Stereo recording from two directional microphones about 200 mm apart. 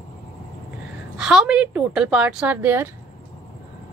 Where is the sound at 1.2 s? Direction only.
5° right (ahead or behind).